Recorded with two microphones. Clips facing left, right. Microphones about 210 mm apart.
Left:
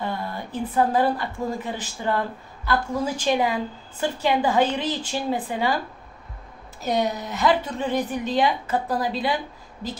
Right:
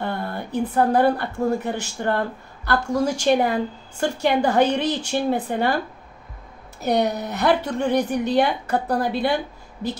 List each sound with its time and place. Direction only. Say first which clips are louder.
0.0 s a woman's voice: right 2 dB; 60° right (ahead or behind)
3.3 s a woman's voice: right 3 dB; 60° right (ahead or behind)
6.8 s a woman's voice: right 3 dB; 65° right (ahead or behind)